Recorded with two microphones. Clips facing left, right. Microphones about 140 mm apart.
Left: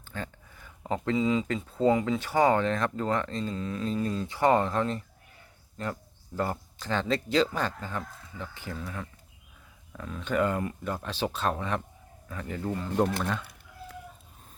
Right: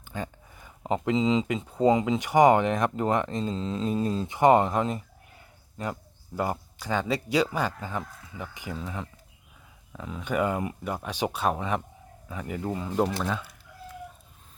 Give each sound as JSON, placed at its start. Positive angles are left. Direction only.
{"t": 0.0, "sound": "speech", "side_deg": -15}